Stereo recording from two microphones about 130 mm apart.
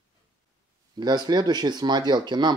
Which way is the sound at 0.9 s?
35° right (ahead or behind).